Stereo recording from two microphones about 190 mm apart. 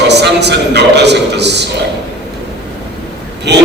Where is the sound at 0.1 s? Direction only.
65° right (ahead or behind).